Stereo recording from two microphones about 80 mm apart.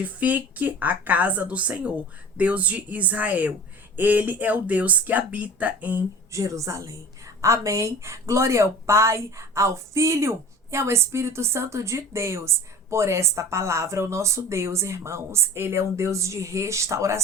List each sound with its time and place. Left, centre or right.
0.0 s a woman's voice: right
6.3 s speech: right